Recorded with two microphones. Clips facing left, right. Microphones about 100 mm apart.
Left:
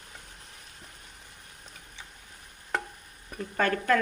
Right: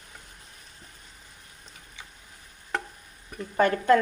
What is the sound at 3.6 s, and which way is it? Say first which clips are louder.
Speech: right 5 dB; 25° right (ahead or behind).